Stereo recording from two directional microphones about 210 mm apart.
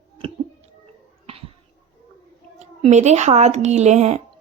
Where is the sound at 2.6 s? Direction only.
30° right (ahead or behind).